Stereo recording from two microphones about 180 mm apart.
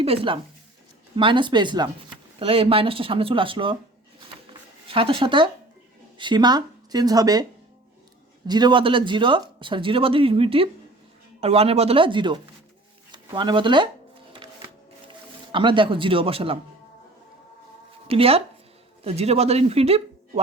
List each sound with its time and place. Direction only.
0.0 s speech: 30° right (ahead or behind)
4.9 s speech: 30° right (ahead or behind)
8.4 s speech: 25° right (ahead or behind)
14.3 s a sound: 30° right (ahead or behind)
15.5 s speech: 25° right (ahead or behind)
18.1 s speech: 30° right (ahead or behind)